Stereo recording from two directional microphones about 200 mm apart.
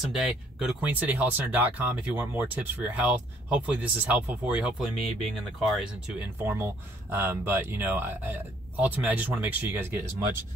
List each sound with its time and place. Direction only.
0.0 s speech: 5° right (ahead or behind)